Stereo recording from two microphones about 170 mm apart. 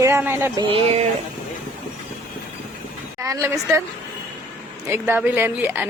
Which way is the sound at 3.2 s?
15° right (ahead or behind).